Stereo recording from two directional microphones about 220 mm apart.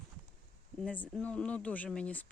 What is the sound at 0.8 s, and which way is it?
A woman's voice, 5° left (ahead or behind).